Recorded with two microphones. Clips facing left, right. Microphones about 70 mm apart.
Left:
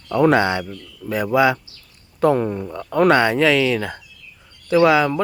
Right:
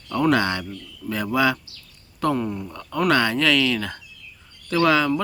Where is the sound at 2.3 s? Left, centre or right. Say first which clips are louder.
Left 5 dB; left.